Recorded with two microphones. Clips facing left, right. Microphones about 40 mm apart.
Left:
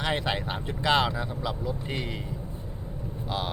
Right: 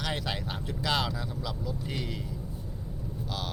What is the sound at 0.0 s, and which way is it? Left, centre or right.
Speech, left.